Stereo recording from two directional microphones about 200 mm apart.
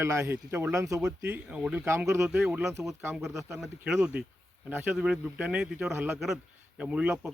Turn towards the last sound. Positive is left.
turn(degrees=-5)  # may be behind; listen again after turning